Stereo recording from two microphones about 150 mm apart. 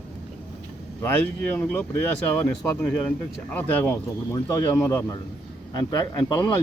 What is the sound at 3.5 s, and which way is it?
Speech, 10° left (ahead or behind).